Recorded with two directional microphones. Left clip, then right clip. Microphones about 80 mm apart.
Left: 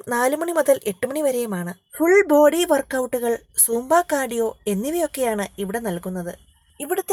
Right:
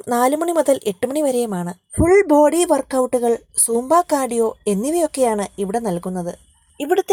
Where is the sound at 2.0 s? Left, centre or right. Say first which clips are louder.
Right 2 dB; centre.